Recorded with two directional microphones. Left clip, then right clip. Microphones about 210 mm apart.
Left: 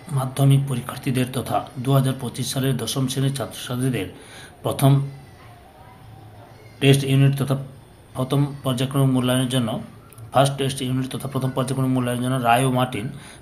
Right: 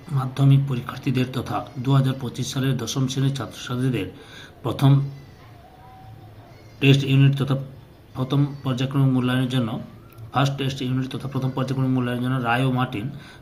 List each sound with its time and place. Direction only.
0.1 s speech: centre (ahead or behind)
6.7 s speech: 5° right (ahead or behind)